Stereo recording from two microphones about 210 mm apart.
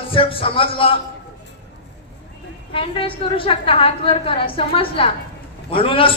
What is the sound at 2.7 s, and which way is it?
A man's voice, 25° left (ahead or behind).